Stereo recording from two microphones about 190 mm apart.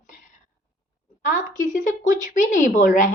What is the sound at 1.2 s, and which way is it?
A woman's voice, 45° left (ahead or behind).